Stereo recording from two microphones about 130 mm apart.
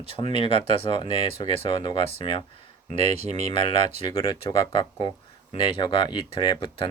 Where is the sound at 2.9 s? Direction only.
60° right (ahead or behind).